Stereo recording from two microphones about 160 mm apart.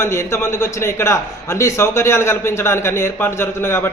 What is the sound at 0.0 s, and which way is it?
A man's voice, 15° left (ahead or behind).